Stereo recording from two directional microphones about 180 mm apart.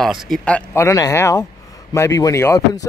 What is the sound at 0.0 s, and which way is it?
Speech, centre (ahead or behind).